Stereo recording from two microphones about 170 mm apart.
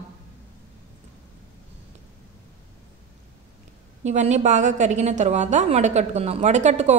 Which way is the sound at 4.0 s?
45° right (ahead or behind).